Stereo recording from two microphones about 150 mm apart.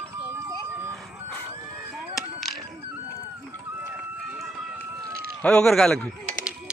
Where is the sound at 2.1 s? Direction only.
Centre (ahead or behind).